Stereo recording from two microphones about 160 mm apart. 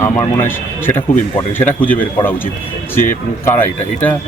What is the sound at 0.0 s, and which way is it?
Speech, 15° left (ahead or behind).